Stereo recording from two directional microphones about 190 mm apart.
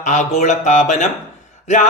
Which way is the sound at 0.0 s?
40° left (ahead or behind).